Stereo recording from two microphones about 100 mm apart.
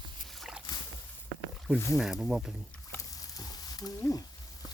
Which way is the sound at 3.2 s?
40° left (ahead or behind).